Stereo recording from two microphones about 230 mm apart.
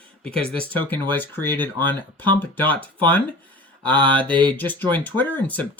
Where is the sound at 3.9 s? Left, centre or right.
Right.